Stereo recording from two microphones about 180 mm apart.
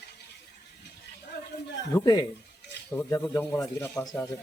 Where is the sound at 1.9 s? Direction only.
20° left (ahead or behind).